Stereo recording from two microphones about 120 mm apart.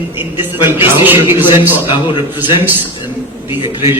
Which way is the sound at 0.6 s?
20° right (ahead or behind).